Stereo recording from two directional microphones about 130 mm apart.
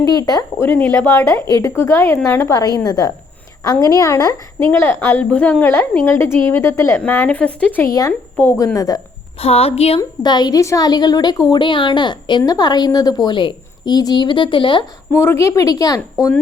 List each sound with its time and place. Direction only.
0.0 s speech: 30° left (ahead or behind)
0.6 s a woman's voice: 15° left (ahead or behind)
7.9 s speech: 25° left (ahead or behind)
9.4 s a woman's voice: 50° left (ahead or behind)
10.0 s a woman's voice: 35° left (ahead or behind)
15.1 s speech: 20° left (ahead or behind)